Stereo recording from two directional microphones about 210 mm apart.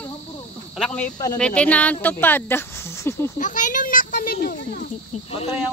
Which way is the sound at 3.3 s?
35° left (ahead or behind).